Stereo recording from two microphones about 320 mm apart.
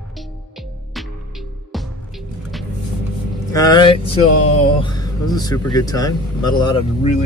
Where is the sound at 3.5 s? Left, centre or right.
Centre.